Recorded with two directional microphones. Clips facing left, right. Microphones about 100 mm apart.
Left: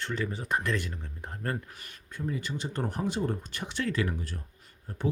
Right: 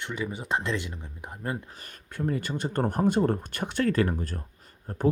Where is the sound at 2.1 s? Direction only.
55° right (ahead or behind).